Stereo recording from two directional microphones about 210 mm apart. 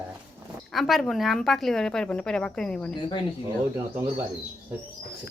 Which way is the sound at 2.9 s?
25° left (ahead or behind).